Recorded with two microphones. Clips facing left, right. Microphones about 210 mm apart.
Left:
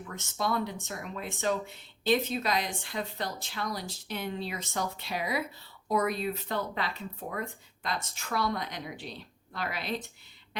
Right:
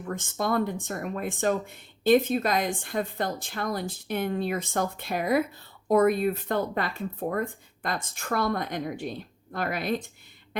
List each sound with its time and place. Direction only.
0.0 s speech: 50° right (ahead or behind)